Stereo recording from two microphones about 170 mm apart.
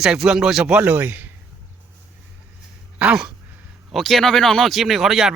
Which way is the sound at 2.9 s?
5° right (ahead or behind).